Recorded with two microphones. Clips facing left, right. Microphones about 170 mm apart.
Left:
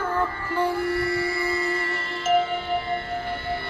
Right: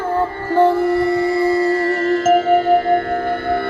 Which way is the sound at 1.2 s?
45° right (ahead or behind).